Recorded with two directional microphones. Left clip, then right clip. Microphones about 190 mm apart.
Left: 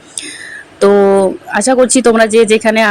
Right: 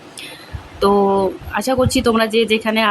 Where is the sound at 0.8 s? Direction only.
20° left (ahead or behind).